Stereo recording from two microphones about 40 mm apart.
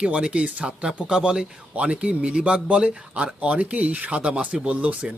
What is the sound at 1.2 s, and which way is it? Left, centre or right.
Speech, centre.